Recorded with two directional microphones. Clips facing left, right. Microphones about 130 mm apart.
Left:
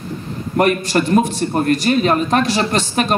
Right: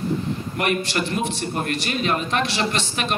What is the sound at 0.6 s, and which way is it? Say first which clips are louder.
A man's voice: left 9 dB; 40° left (ahead or behind).